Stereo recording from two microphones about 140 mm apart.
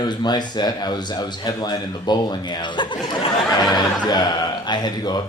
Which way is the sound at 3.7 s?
30° left (ahead or behind).